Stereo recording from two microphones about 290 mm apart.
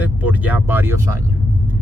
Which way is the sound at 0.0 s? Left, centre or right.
Centre.